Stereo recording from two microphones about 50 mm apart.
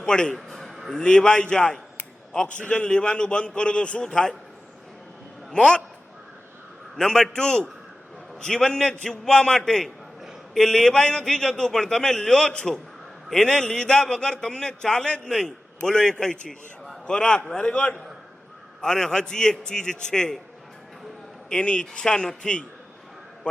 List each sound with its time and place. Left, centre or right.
0.0 s a man's voice: centre
0.3 s a sound: centre
0.9 s a man's voice: centre
5.5 s a man's voice: centre
6.9 s a man's voice: centre; by 18.0 s left
18.8 s a man's voice: centre
21.5 s a man's voice: left